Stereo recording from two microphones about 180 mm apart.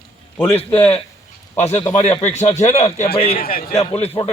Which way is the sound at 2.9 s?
35° left (ahead or behind).